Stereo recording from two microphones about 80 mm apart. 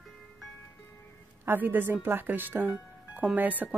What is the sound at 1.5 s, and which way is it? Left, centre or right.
Speech, right.